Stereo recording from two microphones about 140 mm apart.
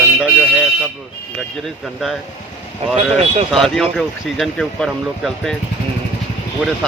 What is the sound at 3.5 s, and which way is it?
Speech, centre (ahead or behind).